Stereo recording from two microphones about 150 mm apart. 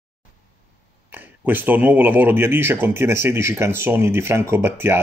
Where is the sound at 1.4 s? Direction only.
10° right (ahead or behind).